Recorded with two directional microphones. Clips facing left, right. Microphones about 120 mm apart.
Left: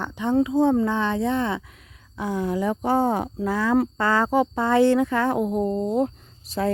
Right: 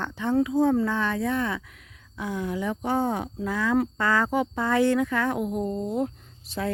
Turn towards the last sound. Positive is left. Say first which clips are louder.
# left 5 dB
turn(degrees=40)  # may be behind; listen again after turning